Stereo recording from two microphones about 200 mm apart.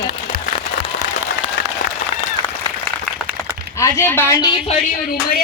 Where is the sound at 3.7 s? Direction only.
15° left (ahead or behind).